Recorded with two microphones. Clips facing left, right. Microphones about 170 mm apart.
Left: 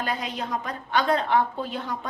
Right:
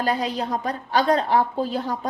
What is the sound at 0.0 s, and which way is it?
A woman's voice, 35° right (ahead or behind).